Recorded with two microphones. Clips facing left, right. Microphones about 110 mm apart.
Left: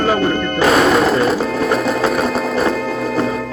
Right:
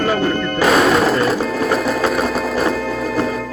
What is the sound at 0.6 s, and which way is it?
Music, centre (ahead or behind).